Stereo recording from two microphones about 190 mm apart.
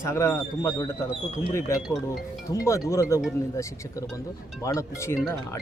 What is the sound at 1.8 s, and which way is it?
Speech, centre (ahead or behind).